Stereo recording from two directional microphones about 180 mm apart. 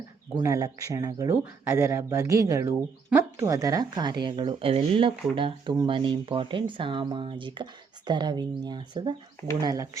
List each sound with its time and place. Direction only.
0.4 s speech: 15° right (ahead or behind)